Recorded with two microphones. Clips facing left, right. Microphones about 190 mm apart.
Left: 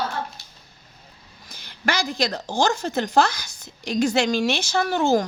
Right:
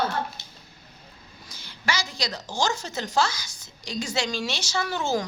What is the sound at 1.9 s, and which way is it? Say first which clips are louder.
A woman's voice: left 6 dB; 60° left (ahead or behind).